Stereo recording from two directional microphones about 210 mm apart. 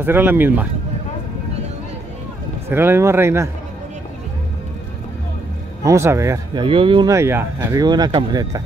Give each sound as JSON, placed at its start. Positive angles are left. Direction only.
{"t": 0.0, "sound": "speech", "side_deg": -10}
{"t": 2.7, "sound": "speech", "side_deg": -10}
{"t": 5.9, "sound": "speech", "side_deg": -15}